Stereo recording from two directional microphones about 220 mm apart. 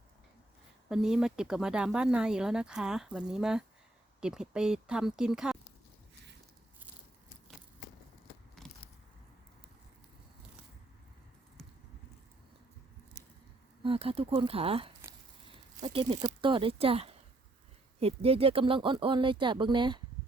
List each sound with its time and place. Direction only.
0.9 s speech: centre (ahead or behind)
8.6 s biting: centre (ahead or behind)
13.8 s speech: 25° right (ahead or behind)